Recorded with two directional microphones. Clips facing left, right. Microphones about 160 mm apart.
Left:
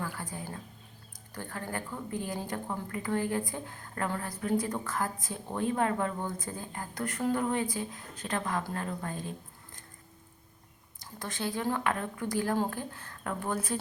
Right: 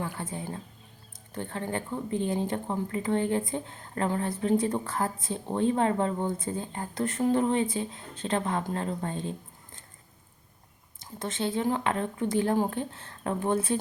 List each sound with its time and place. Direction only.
0.0 s speech: 25° right (ahead or behind)
11.0 s speech: 25° right (ahead or behind)